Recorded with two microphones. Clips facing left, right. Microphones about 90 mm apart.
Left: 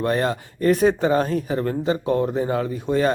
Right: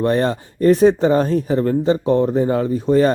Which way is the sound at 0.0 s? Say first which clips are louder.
Right 4 dB; 35° right (ahead or behind).